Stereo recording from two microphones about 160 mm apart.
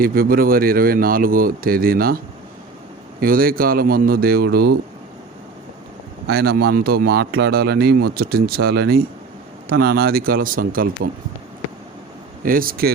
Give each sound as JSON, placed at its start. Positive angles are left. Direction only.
{"t": 0.0, "sound": "speech", "side_deg": -65}
{"t": 6.2, "sound": "speech", "side_deg": -80}
{"t": 9.6, "sound": "speech", "side_deg": -70}
{"t": 12.5, "sound": "speech", "side_deg": -65}